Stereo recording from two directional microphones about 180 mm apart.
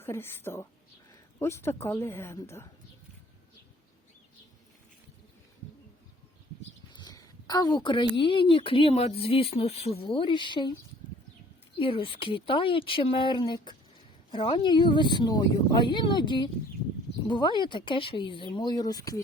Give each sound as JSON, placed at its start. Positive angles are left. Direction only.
{"t": 0.0, "sound": "speech", "side_deg": 10}
{"t": 6.9, "sound": "a sound", "side_deg": 20}
{"t": 8.1, "sound": "speech", "side_deg": 30}
{"t": 11.8, "sound": "speech", "side_deg": 30}